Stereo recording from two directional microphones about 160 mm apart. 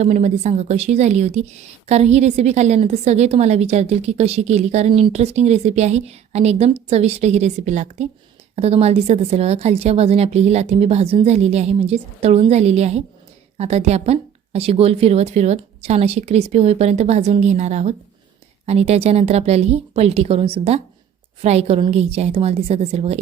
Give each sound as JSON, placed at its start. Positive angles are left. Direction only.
{"t": 0.0, "sound": "a woman's voice", "side_deg": -45}